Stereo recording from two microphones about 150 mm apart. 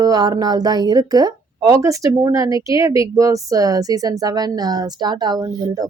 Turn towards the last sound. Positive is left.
turn(degrees=-25)  # may be behind; listen again after turning